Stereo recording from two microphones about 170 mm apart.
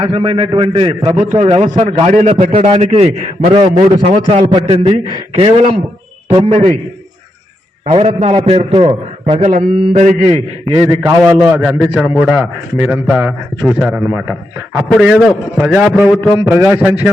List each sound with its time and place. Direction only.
0.0 s a man's voice: 35° right (ahead or behind)
2.3 s a man's voice: 50° right (ahead or behind)
3.5 s a man's voice: 35° right (ahead or behind)
7.9 s a man's voice: 40° right (ahead or behind)
9.5 s a man's voice: 45° right (ahead or behind)
10.8 s a man's voice: 15° right (ahead or behind)